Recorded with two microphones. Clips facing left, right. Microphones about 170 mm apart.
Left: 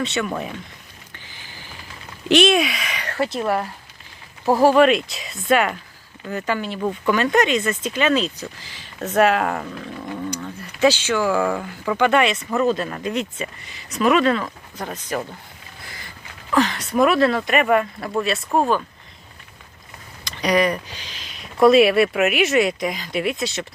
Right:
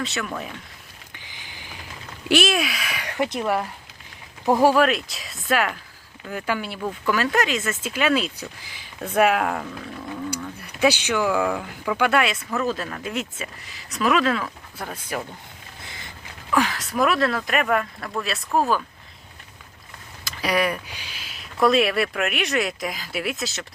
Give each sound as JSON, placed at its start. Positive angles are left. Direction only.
{"t": 0.0, "sound": "speech", "side_deg": 0}
{"t": 1.1, "sound": "boat", "side_deg": -15}
{"t": 2.3, "sound": "speech", "side_deg": -5}
{"t": 4.8, "sound": "speech", "side_deg": 0}
{"t": 6.7, "sound": "speech", "side_deg": 10}
{"t": 7.1, "sound": "speech", "side_deg": 0}
{"t": 15.8, "sound": "a sound", "side_deg": -20}
{"t": 16.6, "sound": "speech", "side_deg": -5}
{"t": 20.2, "sound": "speech", "side_deg": -5}